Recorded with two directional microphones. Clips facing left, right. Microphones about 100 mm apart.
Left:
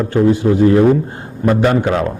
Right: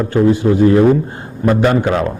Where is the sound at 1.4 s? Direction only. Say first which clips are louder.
Even; 20° right (ahead or behind).